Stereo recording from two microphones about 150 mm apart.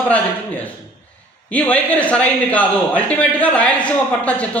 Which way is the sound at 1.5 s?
10° left (ahead or behind).